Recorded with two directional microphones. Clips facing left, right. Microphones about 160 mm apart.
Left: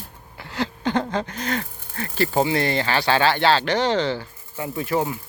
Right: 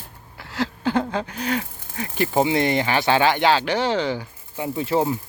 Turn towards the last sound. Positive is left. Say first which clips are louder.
# right 2 dB
turn(degrees=-25)  # may be behind; listen again after turning